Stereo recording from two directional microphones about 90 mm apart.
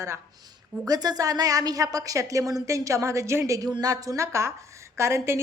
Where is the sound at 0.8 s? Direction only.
45° right (ahead or behind).